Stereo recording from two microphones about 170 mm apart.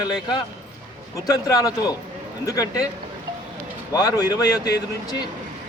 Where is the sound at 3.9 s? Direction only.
20° left (ahead or behind).